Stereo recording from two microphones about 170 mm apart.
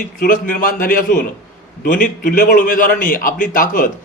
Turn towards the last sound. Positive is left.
turn(degrees=55)  # may be behind; listen again after turning